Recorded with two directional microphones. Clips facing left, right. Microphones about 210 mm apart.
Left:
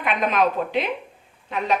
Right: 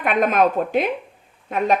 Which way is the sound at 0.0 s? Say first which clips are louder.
Right 4 dB; 50° right (ahead or behind).